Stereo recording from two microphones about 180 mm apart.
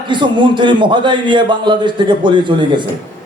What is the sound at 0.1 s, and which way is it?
A man's voice, 25° right (ahead or behind).